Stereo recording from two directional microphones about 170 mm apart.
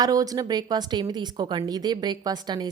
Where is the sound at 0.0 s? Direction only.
20° right (ahead or behind).